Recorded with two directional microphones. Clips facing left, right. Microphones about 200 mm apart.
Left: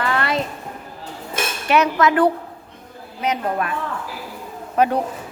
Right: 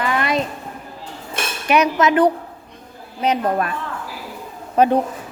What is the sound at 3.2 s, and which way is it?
Speech, 30° right (ahead or behind).